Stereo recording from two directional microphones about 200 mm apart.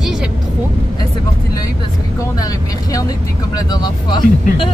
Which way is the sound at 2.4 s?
15° left (ahead or behind).